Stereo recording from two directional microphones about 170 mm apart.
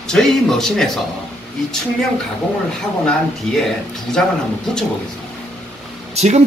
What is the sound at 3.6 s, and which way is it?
Speech, centre (ahead or behind).